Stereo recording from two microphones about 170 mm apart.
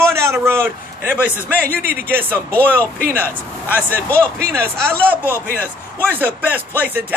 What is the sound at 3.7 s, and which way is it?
Speech, 10° right (ahead or behind).